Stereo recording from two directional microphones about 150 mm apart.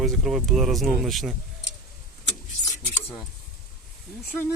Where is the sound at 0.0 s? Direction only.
Centre (ahead or behind).